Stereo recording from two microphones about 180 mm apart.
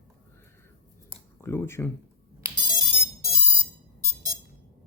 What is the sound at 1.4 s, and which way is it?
Speech, 15° left (ahead or behind).